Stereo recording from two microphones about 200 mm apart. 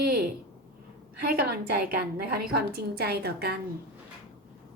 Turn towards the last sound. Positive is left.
turn(degrees=-50)  # may be behind; listen again after turning